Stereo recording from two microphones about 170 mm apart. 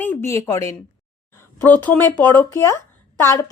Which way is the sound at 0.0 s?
15° left (ahead or behind).